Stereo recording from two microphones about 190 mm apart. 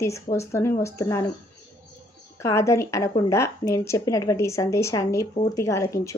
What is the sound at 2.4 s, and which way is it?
A woman's voice, 15° left (ahead or behind).